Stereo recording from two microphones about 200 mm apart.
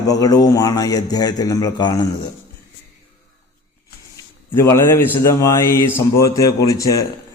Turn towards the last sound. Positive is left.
turn(degrees=15)  # may be behind; listen again after turning